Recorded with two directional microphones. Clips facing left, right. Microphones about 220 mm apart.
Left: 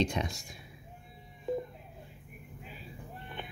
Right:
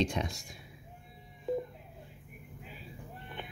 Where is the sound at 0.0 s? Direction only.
Centre (ahead or behind).